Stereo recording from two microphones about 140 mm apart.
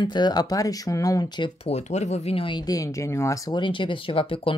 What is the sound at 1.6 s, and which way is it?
Speech, 50° left (ahead or behind).